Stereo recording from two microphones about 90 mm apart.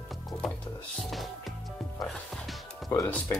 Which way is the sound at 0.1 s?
Centre (ahead or behind).